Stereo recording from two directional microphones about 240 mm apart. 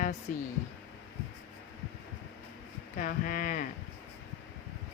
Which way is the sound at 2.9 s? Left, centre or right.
Left.